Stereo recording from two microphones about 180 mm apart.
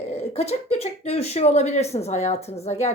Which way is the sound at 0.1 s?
35° left (ahead or behind).